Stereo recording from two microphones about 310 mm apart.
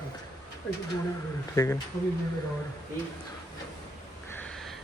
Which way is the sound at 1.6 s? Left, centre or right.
Centre.